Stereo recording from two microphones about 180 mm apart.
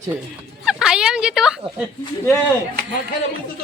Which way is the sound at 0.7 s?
5° right (ahead or behind).